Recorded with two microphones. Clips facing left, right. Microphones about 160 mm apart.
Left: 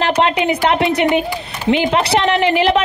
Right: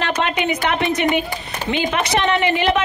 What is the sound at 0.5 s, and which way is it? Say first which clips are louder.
Speech: left 5 dB; 35° left (ahead or behind).